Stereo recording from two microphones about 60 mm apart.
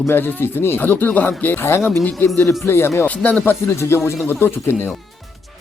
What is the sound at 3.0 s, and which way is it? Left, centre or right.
Speech, left.